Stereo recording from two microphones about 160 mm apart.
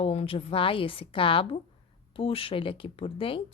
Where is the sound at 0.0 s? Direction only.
40° left (ahead or behind).